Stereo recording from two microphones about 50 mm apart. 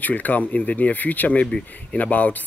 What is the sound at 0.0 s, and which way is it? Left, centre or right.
Speech, left.